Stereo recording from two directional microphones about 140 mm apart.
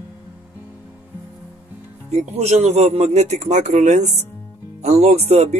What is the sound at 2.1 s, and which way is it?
Speech, 50° right (ahead or behind).